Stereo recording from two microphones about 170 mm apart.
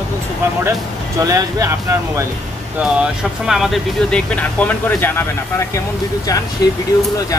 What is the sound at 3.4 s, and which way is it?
Speech, centre (ahead or behind).